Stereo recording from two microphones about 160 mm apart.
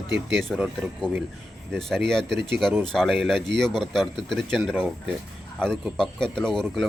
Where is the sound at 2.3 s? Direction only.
90° right.